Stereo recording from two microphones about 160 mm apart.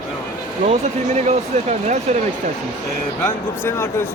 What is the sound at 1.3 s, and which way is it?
Speech, 45° right (ahead or behind).